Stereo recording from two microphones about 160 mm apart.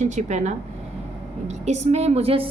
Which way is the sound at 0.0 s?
45° right (ahead or behind).